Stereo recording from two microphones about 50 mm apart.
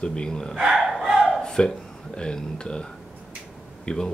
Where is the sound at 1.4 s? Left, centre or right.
Centre.